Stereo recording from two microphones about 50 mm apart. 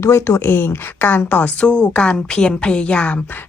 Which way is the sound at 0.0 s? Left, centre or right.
Left.